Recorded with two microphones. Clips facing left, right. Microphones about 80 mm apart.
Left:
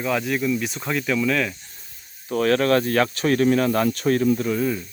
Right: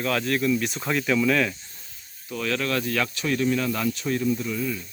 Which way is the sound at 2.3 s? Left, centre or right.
Left.